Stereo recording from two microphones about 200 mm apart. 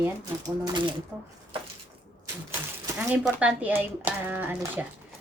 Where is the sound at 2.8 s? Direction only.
15° right (ahead or behind).